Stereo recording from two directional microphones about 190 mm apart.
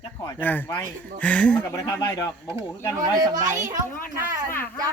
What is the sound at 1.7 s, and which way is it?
Speech, 20° left (ahead or behind).